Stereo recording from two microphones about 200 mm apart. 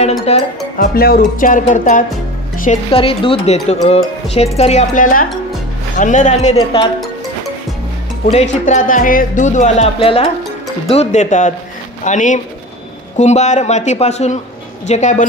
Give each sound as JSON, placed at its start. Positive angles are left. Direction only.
{"t": 0.3, "sound": "speech", "side_deg": 30}
{"t": 0.7, "sound": "speech", "side_deg": 50}
{"t": 2.9, "sound": "speech", "side_deg": 25}
{"t": 8.3, "sound": "speech", "side_deg": 35}